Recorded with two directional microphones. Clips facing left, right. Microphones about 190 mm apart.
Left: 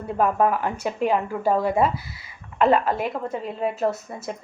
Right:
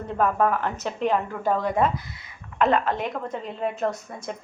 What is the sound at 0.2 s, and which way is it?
A woman's voice, 10° left (ahead or behind).